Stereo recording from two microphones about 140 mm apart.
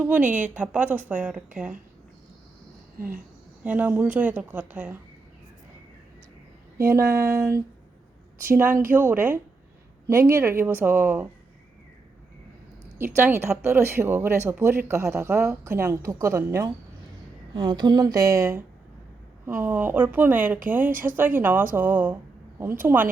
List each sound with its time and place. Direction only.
0.0 s speech: 10° right (ahead or behind)
3.6 s speech: 10° right (ahead or behind)
6.7 s speech: 20° right (ahead or behind)
13.0 s speech: 15° right (ahead or behind)
17.5 s speech: 35° right (ahead or behind); by 23.0 s 15° right (ahead or behind)